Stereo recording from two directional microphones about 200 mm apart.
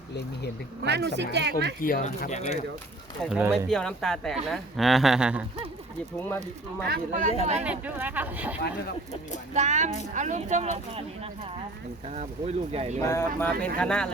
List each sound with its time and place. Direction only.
0.9 s speech: 60° right (ahead or behind)
1.8 s speech: 45° left (ahead or behind)
3.2 s speech: 5° right (ahead or behind)
3.7 s speech: 5° left (ahead or behind)
6.2 s speech: 10° left (ahead or behind)
6.8 s speech: 45° right (ahead or behind)
7.6 s speech: 5° right (ahead or behind)
9.6 s speech: 35° right (ahead or behind)
13.0 s speech: 15° left (ahead or behind)